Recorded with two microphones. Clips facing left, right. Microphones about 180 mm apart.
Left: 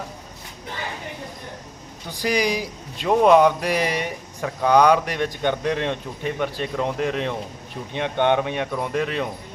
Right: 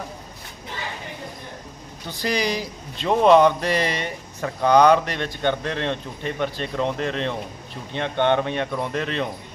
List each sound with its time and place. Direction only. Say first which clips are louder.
2.0 s a man's voice: left 2 dB; 10° left (ahead or behind)